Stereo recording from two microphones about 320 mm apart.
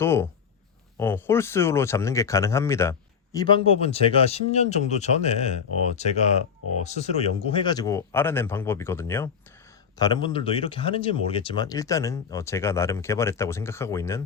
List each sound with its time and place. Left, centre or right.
0.0 s speech: centre